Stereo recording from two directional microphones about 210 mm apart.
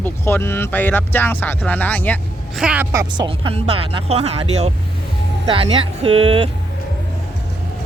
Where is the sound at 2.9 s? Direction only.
15° right (ahead or behind).